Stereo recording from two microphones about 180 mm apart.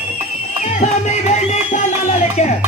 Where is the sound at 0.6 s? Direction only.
40° left (ahead or behind).